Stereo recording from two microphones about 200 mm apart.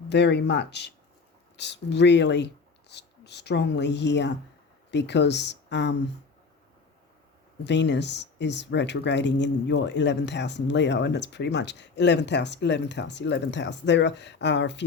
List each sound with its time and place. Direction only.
0.1 s speech: 55° left (ahead or behind)
7.6 s speech: 60° left (ahead or behind)